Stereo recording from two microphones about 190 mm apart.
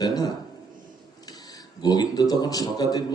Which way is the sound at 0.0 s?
20° left (ahead or behind).